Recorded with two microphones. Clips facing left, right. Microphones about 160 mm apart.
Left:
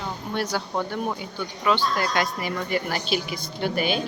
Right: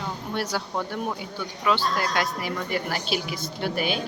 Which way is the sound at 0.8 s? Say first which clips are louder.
Left 2 dB; centre (ahead or behind).